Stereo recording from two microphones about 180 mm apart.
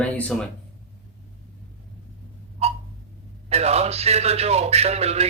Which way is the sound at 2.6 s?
35° right (ahead or behind).